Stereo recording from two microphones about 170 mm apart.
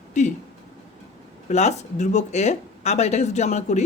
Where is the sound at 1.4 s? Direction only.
40° left (ahead or behind).